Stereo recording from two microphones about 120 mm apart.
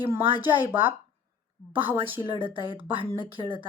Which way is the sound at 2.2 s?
45° right (ahead or behind).